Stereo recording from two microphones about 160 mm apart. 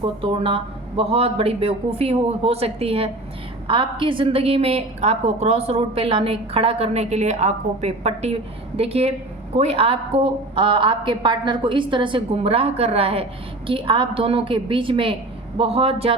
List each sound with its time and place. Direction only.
0.0 s a woman's voice: 35° right (ahead or behind)